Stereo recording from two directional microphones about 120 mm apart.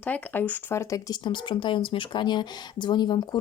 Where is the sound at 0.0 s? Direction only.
15° left (ahead or behind).